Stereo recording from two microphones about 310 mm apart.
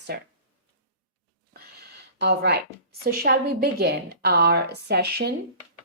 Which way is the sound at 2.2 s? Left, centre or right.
Right.